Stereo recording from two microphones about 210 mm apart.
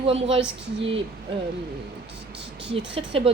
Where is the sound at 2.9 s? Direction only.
25° right (ahead or behind).